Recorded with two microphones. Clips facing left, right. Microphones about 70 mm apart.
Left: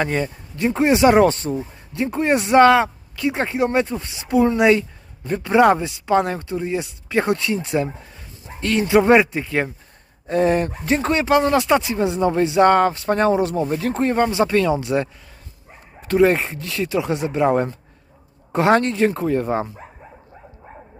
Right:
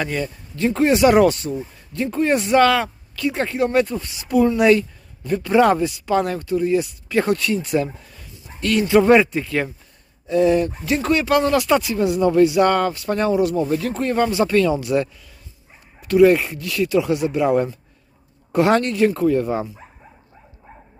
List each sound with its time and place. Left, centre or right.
0.0 s speech: left
1.5 s speech: left
10.2 s speech: left